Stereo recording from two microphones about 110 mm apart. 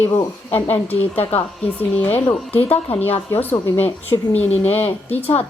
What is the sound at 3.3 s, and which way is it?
Speech, 15° left (ahead or behind).